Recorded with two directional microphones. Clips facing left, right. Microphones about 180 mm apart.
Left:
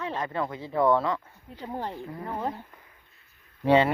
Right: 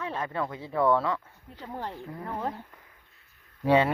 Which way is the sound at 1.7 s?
25° left (ahead or behind).